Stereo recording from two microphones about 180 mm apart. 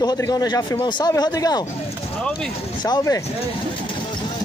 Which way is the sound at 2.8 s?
20° left (ahead or behind).